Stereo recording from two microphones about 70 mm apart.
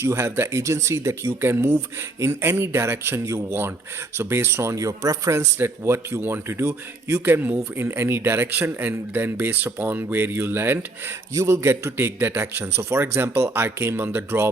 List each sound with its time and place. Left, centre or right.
0.0 s a man's voice: right
3.2 s speech: right
4.2 s a man's voice: right
5.5 s a man's voice: right
7.3 s a man's voice: right